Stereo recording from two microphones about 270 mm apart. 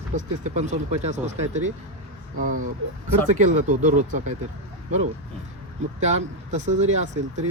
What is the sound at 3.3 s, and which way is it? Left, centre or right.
Speech, right.